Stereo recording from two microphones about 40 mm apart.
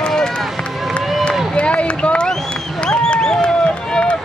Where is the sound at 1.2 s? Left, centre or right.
Left.